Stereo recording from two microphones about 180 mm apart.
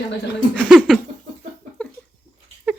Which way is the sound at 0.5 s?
5° left (ahead or behind).